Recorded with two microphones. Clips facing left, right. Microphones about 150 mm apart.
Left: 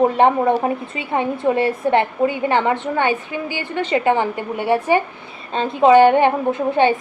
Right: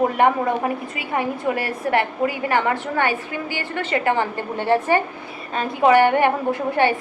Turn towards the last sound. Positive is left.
turn(degrees=20)  # may be behind; listen again after turning